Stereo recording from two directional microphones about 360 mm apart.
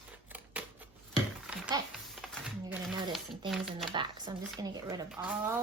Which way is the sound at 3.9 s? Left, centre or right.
Centre.